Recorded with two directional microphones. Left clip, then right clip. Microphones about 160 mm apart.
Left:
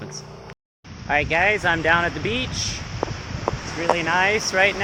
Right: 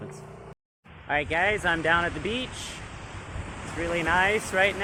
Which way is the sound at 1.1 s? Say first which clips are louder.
Left 6 dB; 20° left (ahead or behind).